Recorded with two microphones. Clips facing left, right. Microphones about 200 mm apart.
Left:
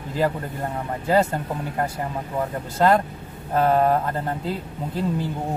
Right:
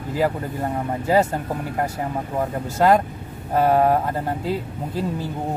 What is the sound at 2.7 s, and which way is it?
Speech, 10° right (ahead or behind).